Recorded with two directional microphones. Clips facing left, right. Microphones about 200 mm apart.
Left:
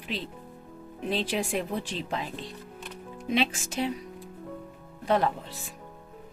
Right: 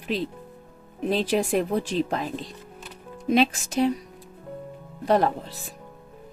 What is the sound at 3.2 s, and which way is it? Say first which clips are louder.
Speech: right 6 dB; 45° right (ahead or behind).